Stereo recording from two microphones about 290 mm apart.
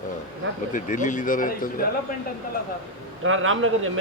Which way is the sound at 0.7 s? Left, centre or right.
Left.